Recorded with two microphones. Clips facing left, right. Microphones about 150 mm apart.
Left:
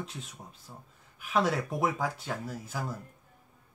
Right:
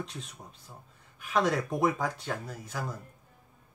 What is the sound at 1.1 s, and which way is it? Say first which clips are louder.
Speech: right 1 dB; 5° left (ahead or behind).